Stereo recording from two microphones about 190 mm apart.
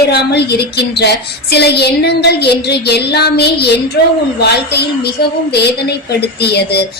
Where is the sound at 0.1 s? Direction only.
60° left (ahead or behind).